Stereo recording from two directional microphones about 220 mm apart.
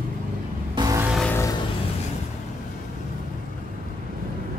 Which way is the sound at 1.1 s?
Centre (ahead or behind).